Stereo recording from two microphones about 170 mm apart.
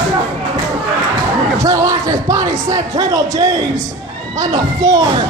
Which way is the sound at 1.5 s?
20° right (ahead or behind).